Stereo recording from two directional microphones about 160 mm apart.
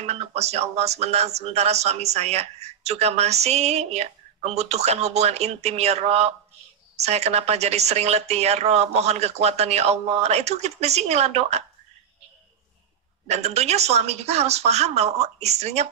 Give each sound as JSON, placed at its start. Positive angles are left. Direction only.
{"t": 0.0, "sound": "speech", "side_deg": -40}
{"t": 13.3, "sound": "speech", "side_deg": -40}